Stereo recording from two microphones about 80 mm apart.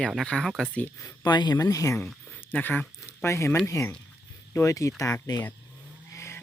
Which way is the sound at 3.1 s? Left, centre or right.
Left.